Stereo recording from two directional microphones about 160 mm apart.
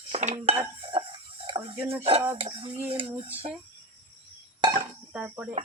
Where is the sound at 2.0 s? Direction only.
35° right (ahead or behind).